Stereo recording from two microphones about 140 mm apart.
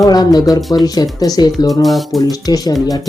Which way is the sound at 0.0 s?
25° left (ahead or behind).